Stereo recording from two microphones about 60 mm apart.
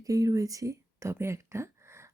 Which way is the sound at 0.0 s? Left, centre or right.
Right.